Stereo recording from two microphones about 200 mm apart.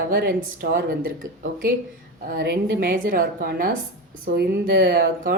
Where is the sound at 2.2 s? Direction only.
50° right (ahead or behind).